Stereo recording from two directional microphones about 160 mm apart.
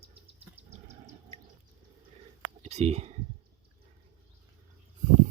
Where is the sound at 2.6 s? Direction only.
45° right (ahead or behind).